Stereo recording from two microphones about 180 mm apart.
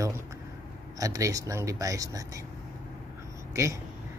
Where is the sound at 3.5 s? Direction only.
15° right (ahead or behind).